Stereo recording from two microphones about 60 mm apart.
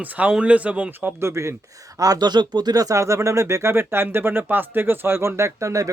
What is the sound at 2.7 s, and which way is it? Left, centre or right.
Speech, right.